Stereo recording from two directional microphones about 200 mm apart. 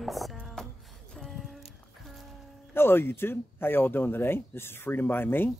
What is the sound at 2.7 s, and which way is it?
Speech, 10° left (ahead or behind).